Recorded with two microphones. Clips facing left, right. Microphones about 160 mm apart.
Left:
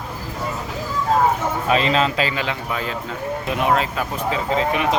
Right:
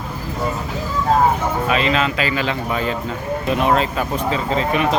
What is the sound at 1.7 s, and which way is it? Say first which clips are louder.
Speech: left 2 dB; 35° left (ahead or behind).